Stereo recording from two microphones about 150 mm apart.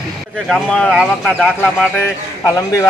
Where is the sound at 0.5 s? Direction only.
5° left (ahead or behind).